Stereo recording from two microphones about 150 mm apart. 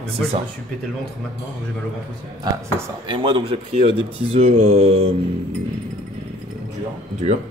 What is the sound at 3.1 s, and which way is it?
A man's voice, 35° right (ahead or behind).